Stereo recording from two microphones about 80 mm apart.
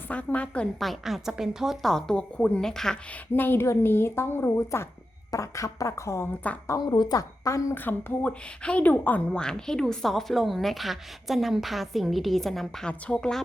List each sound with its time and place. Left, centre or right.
0.3 s speech: centre
0.8 s a woman's voice: centre
3.3 s a woman's voice: left
6.4 s speech: centre
6.9 s a woman's voice: left
7.2 s a woman's voice: left
7.8 s a woman's voice: left